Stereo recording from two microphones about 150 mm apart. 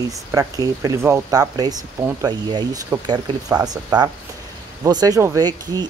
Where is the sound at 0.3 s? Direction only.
25° right (ahead or behind).